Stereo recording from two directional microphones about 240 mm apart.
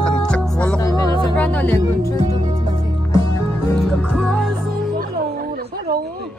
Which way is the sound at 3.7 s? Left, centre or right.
Centre.